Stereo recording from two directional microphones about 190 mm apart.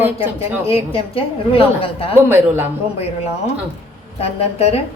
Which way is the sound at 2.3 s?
10° right (ahead or behind).